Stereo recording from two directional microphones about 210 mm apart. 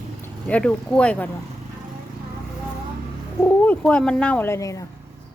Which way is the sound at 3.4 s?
5° left (ahead or behind).